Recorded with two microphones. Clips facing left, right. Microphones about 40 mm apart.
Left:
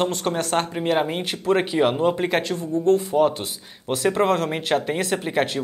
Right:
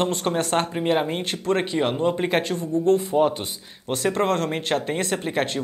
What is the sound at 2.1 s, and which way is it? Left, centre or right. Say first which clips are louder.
Speech: even; centre.